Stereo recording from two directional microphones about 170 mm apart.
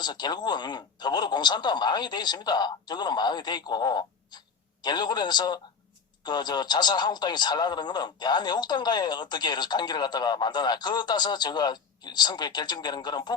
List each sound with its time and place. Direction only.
0.0 s speech: 25° left (ahead or behind)